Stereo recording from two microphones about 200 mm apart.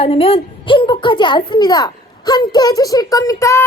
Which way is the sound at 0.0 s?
30° left (ahead or behind).